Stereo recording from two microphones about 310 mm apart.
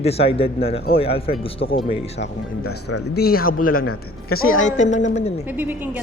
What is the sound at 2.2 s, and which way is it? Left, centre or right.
A woman's voice, left.